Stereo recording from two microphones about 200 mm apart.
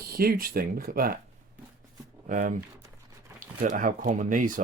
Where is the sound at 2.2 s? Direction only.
40° right (ahead or behind).